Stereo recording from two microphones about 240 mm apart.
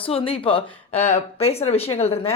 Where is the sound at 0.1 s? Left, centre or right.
Left.